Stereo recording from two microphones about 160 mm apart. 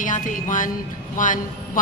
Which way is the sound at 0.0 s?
55° left (ahead or behind).